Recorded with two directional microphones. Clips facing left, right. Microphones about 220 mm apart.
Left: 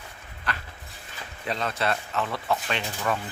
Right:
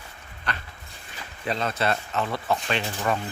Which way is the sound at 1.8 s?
25° right (ahead or behind).